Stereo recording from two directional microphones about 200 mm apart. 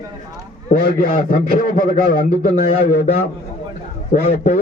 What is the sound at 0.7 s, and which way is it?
A man's voice, 45° left (ahead or behind).